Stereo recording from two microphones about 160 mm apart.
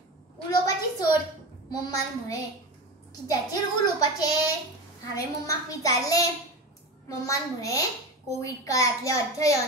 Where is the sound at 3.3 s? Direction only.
20° left (ahead or behind).